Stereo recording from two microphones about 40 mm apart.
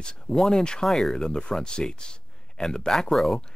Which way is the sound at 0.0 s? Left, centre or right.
Centre.